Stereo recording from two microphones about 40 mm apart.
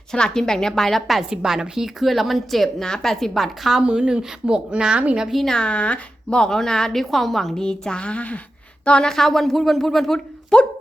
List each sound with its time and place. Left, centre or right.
0.1 s a woman's voice: centre
1.3 s a woman's voice: centre
3.8 s a woman's voice: right
5.5 s speech: left
6.4 s a woman's voice: centre
7.6 s a woman's voice: centre
9.0 s a woman's voice: centre